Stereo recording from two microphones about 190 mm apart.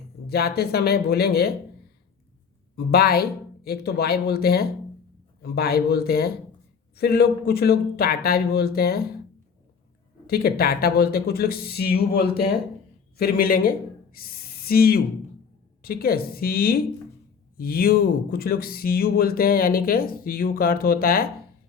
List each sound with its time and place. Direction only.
0.3 s speech: 55° left (ahead or behind)
2.7 s speech: 55° left (ahead or behind)
10.2 s speech: 50° left (ahead or behind)